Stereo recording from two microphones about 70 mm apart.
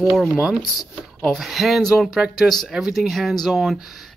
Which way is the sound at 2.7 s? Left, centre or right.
Centre.